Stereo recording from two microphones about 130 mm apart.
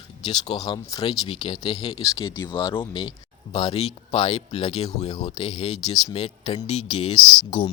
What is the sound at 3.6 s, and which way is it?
Speech, 50° left (ahead or behind).